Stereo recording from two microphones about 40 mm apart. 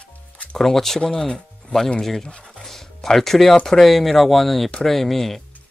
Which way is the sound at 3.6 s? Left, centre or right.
Centre.